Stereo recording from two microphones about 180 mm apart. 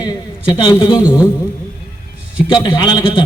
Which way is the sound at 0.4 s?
25° left (ahead or behind).